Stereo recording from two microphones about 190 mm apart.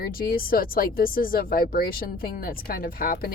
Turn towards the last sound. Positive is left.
turn(degrees=50)  # may be behind; listen again after turning